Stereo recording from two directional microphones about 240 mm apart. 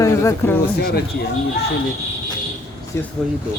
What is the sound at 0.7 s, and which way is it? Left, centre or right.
Speech, left.